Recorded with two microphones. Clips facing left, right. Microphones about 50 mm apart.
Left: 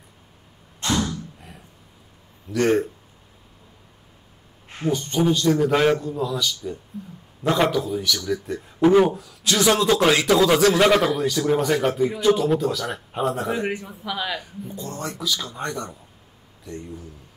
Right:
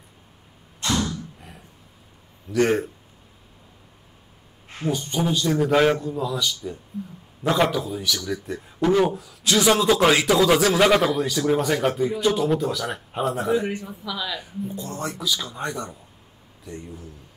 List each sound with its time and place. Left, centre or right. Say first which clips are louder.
2.4 s a man's voice: left 1 dB; centre
4.9 s a man's voice: left 4 dB; centre
8.8 s speech: left 4 dB; centre
9.1 s a man's voice: right 2 dB; centre
14.0 s speech: left 3 dB; left
14.4 s a man's voice: right 2 dB; centre